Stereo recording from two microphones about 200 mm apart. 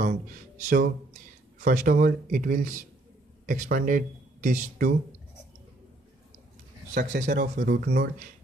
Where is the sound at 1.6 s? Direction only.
40° right (ahead or behind).